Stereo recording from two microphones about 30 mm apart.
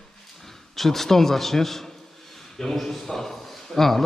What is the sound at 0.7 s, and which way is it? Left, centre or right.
A man's voice, centre.